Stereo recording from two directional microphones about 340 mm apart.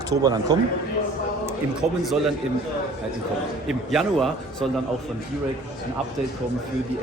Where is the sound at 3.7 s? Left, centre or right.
Centre.